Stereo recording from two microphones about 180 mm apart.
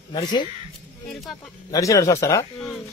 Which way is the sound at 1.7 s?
20° left (ahead or behind).